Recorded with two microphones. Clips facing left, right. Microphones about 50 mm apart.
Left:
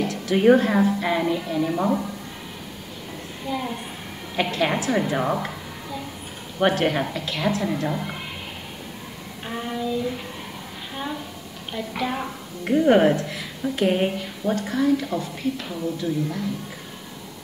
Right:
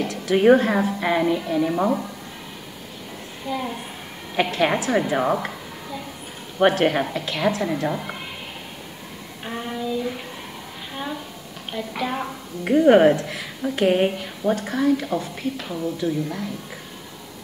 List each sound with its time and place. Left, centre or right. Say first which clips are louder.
0.0 s a woman's voice: right 1 dB; centre
3.4 s a woman's voice: right 1 dB; centre
9.5 s child singing: even; centre
11.0 s a sound: even; centre
11.7 s a woman's voice: even; centre